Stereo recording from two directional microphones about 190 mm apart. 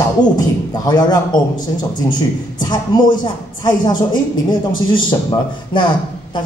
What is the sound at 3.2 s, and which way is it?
A man's voice, 25° left (ahead or behind).